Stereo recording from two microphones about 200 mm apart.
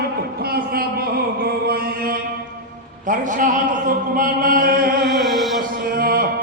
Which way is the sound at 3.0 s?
40° right (ahead or behind).